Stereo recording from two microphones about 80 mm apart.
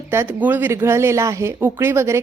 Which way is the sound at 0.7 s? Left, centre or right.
Right.